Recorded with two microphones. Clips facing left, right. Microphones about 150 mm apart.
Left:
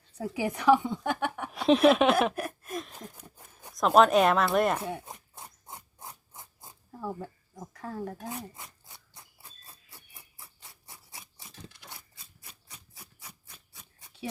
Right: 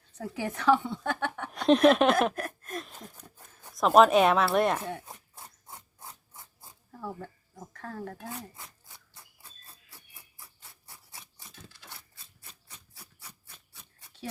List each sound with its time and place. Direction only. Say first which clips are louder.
0.2 s a woman's voice: left 3 dB; 10° left (ahead or behind)
2.8 s a sound: left 2 dB; centre (ahead or behind)
3.7 s speech: right 1 dB; centre (ahead or behind)
5.3 s rub: left 2 dB; 20° left (ahead or behind)
7.6 s a woman's voice: left 2 dB; 10° left (ahead or behind)
10.8 s scissors: left 1 dB; 15° left (ahead or behind)
13.7 s a sound: left 2 dB; 10° left (ahead or behind)